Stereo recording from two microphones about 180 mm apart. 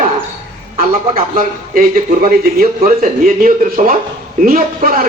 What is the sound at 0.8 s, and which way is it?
A man's voice, 55° right (ahead or behind).